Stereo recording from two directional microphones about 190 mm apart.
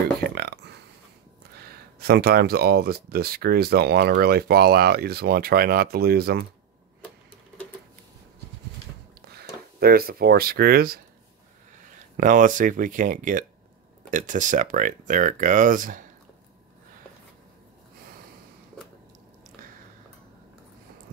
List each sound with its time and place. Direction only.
0.2 s burping: 60° right (ahead or behind)
1.6 s speech: 55° right (ahead or behind)
9.8 s speech: 50° right (ahead or behind)
12.2 s speech: 45° right (ahead or behind)